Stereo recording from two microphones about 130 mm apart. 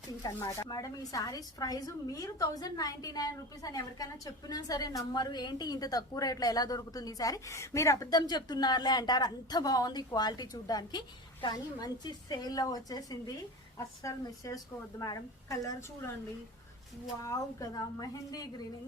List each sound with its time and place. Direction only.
0.2 s a woman's voice: 30° left (ahead or behind)
17.2 s a woman's voice: 25° left (ahead or behind)